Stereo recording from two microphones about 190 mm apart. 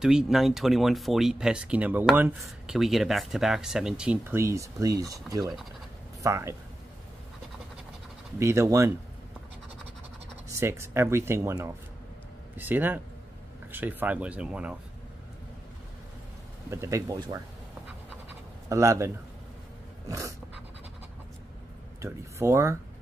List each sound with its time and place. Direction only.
0.0 s speech: 5° right (ahead or behind)
8.4 s speech: 15° right (ahead or behind)
10.5 s speech: 15° right (ahead or behind)
16.7 s speech: 15° right (ahead or behind)
18.7 s speech: 15° right (ahead or behind)
22.0 s speech: 15° right (ahead or behind)